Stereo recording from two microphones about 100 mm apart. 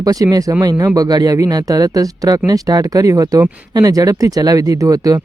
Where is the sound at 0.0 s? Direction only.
40° right (ahead or behind).